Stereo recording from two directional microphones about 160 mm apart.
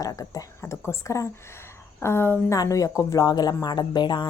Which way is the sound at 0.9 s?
20° left (ahead or behind).